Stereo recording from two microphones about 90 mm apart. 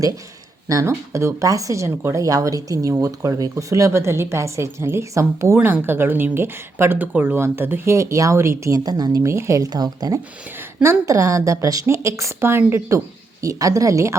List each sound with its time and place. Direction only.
0.7 s speech: 35° right (ahead or behind)
5.5 s speech: 20° right (ahead or behind)
7.9 s speech: 35° right (ahead or behind)
8.8 s speech: 45° right (ahead or behind)
9.2 s speech: 30° right (ahead or behind)